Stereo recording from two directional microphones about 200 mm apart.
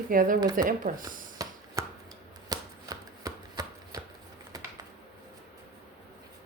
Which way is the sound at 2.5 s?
20° right (ahead or behind).